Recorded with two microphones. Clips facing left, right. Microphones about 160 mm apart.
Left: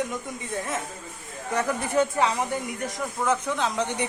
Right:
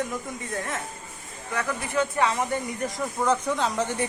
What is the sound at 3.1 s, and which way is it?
Speech, 10° right (ahead or behind).